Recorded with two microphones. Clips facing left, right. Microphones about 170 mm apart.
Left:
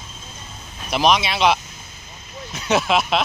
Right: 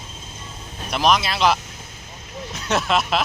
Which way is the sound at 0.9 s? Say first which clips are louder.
Left 1 dB; centre (ahead or behind).